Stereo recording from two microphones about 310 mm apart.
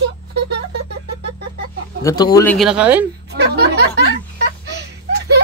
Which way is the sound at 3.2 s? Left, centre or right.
Right.